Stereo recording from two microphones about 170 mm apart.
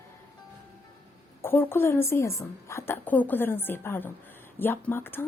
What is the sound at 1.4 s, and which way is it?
A woman's voice, 15° left (ahead or behind).